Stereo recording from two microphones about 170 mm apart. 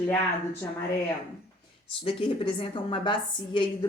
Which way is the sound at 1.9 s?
30° left (ahead or behind).